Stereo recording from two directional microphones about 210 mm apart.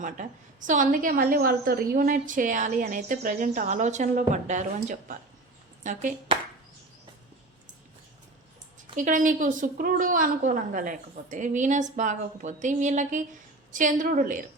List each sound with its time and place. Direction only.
0.0 s a woman's voice: 35° right (ahead or behind)
9.0 s a woman's voice: 40° right (ahead or behind)